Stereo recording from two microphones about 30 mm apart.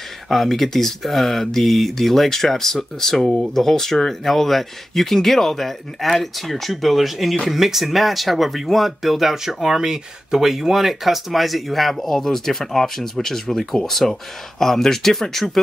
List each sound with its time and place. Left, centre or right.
0.3 s speech: centre
9.8 s speech: right
10.4 s speech: centre